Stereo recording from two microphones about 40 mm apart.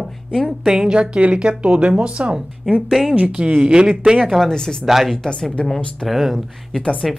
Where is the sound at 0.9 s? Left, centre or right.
Right.